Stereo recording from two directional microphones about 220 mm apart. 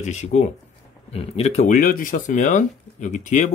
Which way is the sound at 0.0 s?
30° left (ahead or behind).